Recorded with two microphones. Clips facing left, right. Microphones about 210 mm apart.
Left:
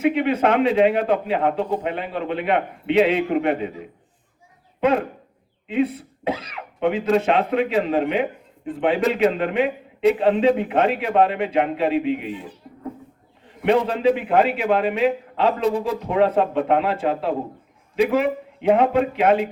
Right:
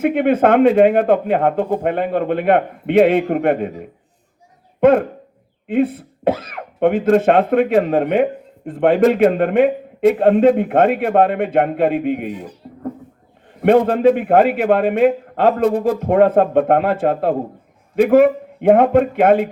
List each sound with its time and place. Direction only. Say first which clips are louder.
0.0 s speech: right 4 dB; 55° right (ahead or behind)